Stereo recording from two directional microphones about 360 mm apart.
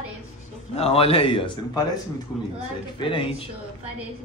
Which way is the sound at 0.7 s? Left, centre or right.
Centre.